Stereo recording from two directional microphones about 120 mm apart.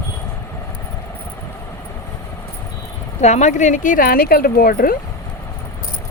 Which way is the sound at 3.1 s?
75° left (ahead or behind).